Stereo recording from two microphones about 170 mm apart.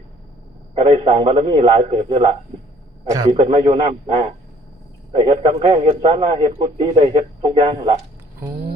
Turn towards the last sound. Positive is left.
turn(degrees=-35)  # may be behind; listen again after turning